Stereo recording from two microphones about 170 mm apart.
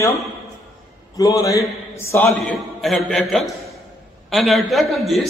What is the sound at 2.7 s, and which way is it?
A man's voice, centre (ahead or behind).